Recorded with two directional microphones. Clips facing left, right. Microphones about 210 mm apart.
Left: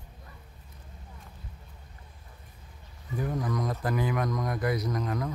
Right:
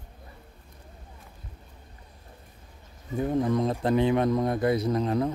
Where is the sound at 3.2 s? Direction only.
25° right (ahead or behind).